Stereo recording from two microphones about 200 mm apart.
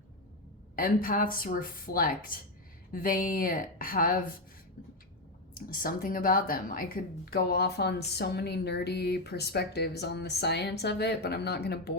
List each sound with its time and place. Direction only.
0.8 s speech: 45° left (ahead or behind)
5.5 s speech: 45° left (ahead or behind)